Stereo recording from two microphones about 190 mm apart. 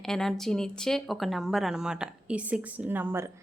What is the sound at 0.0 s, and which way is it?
Speech, centre (ahead or behind).